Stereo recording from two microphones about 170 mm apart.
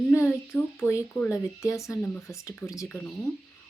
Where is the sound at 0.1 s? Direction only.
15° left (ahead or behind).